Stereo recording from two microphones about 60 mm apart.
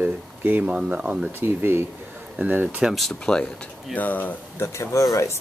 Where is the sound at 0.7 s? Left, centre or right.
Centre.